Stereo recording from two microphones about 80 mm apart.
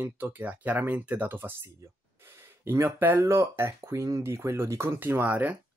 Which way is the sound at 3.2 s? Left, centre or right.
Right.